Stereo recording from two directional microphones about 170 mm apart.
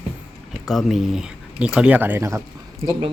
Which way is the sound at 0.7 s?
Centre (ahead or behind).